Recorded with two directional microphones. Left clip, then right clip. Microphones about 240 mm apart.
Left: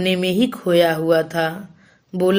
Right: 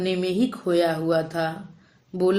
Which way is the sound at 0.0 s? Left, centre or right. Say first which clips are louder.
Left 5 dB; left.